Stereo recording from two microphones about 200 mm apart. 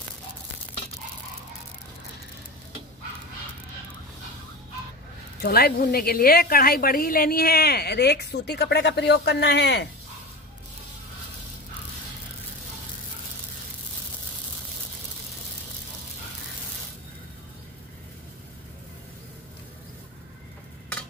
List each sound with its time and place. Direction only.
5.4 s a woman's voice: 50° left (ahead or behind)